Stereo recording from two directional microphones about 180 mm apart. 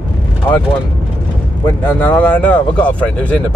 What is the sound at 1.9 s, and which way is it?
Speech, 10° left (ahead or behind).